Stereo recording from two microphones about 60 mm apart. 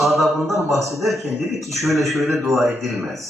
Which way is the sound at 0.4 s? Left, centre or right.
Right.